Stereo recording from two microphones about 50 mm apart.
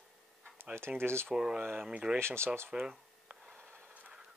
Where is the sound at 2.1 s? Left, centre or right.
Right.